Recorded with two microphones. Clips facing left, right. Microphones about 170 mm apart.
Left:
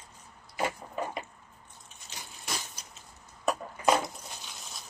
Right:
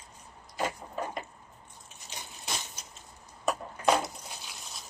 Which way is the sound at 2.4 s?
25° right (ahead or behind).